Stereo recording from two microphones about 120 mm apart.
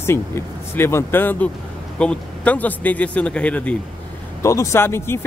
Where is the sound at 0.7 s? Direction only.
20° left (ahead or behind).